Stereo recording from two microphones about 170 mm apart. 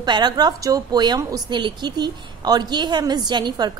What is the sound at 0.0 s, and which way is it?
A woman's voice, 25° right (ahead or behind).